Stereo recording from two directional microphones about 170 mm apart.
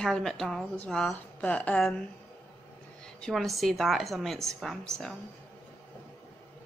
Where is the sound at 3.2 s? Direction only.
Centre (ahead or behind).